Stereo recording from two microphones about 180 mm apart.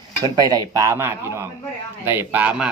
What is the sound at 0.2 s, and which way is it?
A man's voice, 20° right (ahead or behind).